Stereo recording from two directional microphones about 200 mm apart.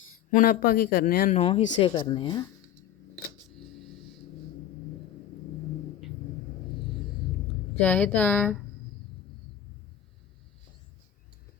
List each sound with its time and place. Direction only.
0.3 s speech: 45° left (ahead or behind)
1.4 s speech: 30° left (ahead or behind)
7.8 s speech: 5° left (ahead or behind)